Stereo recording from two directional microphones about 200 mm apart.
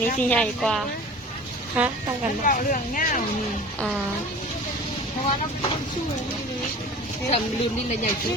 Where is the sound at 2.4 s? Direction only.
40° left (ahead or behind).